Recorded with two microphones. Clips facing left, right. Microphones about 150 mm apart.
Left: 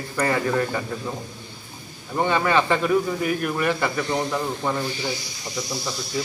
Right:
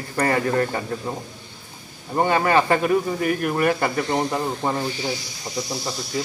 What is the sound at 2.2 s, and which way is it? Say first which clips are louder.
Speech: right 2 dB; 45° right (ahead or behind).